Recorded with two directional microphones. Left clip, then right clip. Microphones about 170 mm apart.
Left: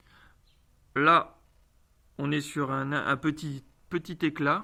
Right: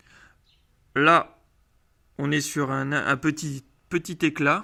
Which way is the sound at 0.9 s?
40° right (ahead or behind).